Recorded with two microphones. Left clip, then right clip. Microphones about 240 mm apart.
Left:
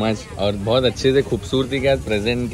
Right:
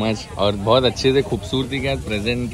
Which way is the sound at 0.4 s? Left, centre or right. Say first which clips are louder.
Right 2 dB; right.